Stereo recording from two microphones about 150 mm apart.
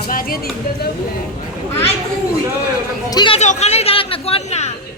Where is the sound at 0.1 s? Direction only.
70° left (ahead or behind).